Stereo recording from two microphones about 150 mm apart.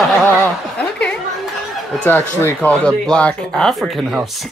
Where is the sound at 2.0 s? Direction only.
15° left (ahead or behind).